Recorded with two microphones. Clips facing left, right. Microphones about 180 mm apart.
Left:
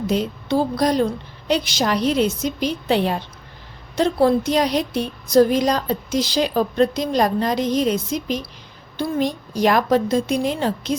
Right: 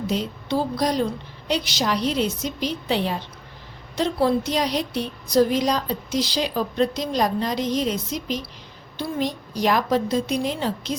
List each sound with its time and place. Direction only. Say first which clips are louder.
0.1 s a woman's voice: left 5 dB; 50° left (ahead or behind)